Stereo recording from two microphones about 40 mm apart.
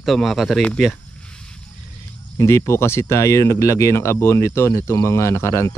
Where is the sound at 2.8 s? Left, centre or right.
Left.